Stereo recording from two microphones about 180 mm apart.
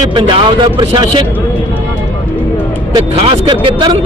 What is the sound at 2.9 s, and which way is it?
Speech, 30° right (ahead or behind).